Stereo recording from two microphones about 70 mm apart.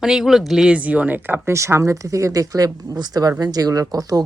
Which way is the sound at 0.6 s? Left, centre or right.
Centre.